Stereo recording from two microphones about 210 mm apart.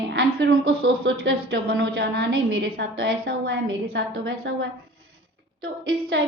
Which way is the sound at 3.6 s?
60° right (ahead or behind).